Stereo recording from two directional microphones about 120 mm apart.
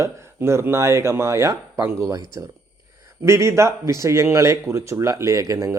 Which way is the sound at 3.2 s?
25° right (ahead or behind).